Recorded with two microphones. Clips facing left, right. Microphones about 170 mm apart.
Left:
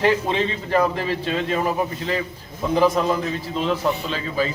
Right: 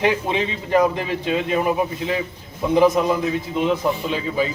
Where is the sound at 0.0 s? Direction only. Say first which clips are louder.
Left 1 dB; 15° right (ahead or behind).